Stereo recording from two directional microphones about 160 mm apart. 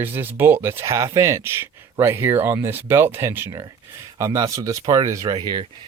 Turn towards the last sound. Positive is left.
turn(degrees=-30)  # may be behind; listen again after turning